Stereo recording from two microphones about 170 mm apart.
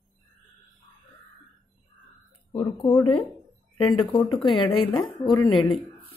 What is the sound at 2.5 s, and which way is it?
A woman's voice, 25° left (ahead or behind).